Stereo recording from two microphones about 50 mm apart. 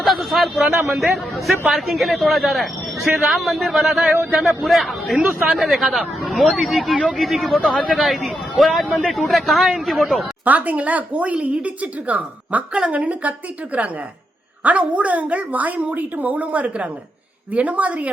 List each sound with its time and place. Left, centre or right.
0.0 s a sound: centre
0.9 s speech: centre
10.4 s a woman's voice: right